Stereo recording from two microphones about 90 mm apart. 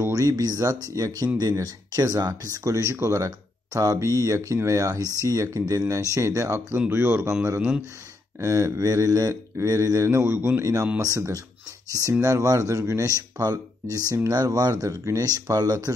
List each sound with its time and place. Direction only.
0.0 s speech: 40° right (ahead or behind)
8.4 s speech: 35° right (ahead or behind)